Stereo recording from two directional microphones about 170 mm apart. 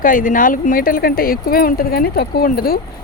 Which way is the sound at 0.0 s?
55° left (ahead or behind).